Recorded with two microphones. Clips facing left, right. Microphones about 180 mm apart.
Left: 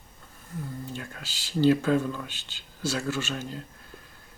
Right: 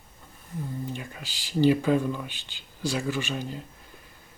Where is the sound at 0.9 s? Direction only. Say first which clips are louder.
Right 2 dB; 15° right (ahead or behind).